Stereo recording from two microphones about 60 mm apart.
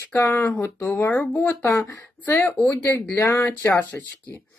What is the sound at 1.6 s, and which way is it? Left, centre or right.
Speech, left.